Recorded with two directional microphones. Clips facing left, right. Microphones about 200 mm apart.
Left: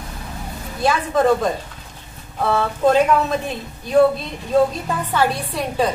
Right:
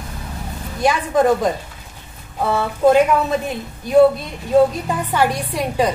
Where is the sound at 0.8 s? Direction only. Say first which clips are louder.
Right 1 dB; 15° right (ahead or behind).